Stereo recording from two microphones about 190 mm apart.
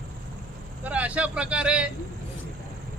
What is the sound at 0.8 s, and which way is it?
Speech, 5° right (ahead or behind).